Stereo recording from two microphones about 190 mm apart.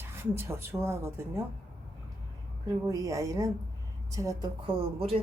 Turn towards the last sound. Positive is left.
turn(degrees=-30)  # may be behind; listen again after turning